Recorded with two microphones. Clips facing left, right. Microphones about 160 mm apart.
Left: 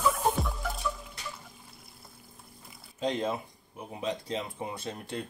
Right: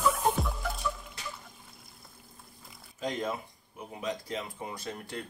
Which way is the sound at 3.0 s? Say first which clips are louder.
Left 3 dB; 25° left (ahead or behind).